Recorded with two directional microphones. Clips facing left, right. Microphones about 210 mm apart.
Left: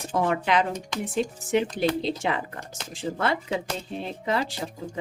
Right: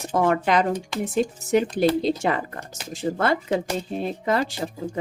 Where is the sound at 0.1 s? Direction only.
45° right (ahead or behind).